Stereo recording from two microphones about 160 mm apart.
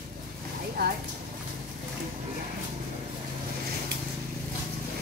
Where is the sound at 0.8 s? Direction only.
70° right (ahead or behind).